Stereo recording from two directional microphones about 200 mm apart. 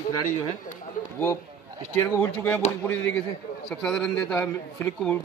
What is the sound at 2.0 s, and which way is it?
A man's voice, 10° left (ahead or behind).